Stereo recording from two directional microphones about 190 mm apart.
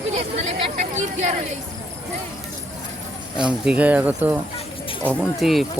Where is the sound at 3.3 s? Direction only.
5° right (ahead or behind).